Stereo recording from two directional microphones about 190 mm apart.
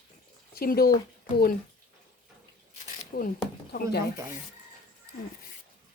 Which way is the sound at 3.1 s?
50° left (ahead or behind).